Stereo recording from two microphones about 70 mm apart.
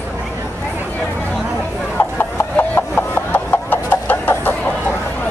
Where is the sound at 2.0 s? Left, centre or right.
Left.